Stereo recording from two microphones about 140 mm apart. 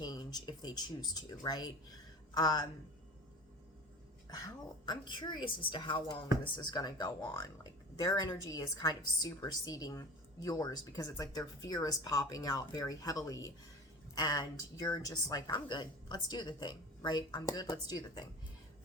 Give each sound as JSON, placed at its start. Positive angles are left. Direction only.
{"t": 0.0, "sound": "a woman's voice", "side_deg": 30}
{"t": 4.3, "sound": "a woman's voice", "side_deg": 25}